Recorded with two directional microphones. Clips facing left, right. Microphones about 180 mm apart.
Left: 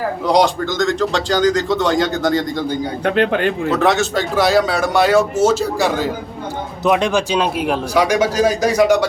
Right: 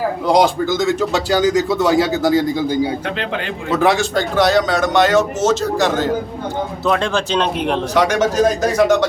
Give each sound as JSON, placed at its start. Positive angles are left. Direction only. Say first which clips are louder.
{"t": 0.3, "sound": "speech", "louder": "right 1 dB", "side_deg": 0}
{"t": 3.2, "sound": "speech", "louder": "left 8 dB", "side_deg": 50}
{"t": 3.7, "sound": "speech", "louder": "right 3 dB", "side_deg": 0}